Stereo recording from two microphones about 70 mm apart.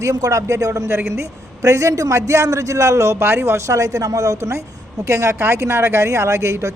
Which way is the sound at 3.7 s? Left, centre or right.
Right.